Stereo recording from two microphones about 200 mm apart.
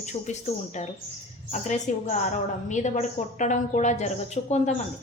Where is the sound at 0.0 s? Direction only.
35° left (ahead or behind).